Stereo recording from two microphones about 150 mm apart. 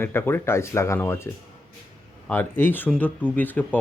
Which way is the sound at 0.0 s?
15° left (ahead or behind).